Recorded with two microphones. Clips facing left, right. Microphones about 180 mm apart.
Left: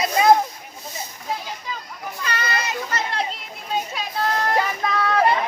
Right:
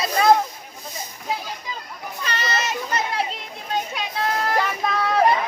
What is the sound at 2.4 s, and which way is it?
Children playing, 25° right (ahead or behind).